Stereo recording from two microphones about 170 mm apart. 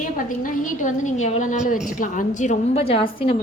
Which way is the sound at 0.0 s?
50° left (ahead or behind).